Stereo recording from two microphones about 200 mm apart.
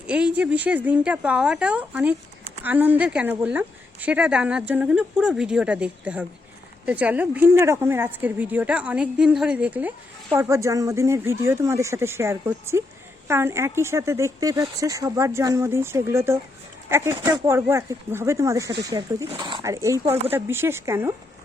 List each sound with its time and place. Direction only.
0.1 s a woman's voice: 5° right (ahead or behind)